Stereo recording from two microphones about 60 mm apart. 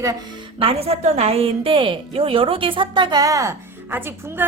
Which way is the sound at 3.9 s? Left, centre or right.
Right.